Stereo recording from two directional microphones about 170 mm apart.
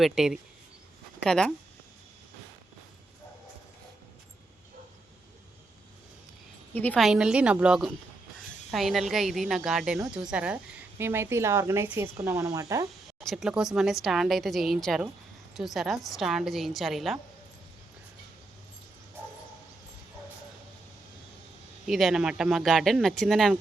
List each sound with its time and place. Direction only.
0.0 s speech: 5° right (ahead or behind)
6.7 s a woman's voice: 10° left (ahead or behind)
7.0 s a woman's voice: 5° right (ahead or behind); by 12.9 s 20° right (ahead or behind)
13.1 s speech: centre (ahead or behind)
21.8 s speech: centre (ahead or behind)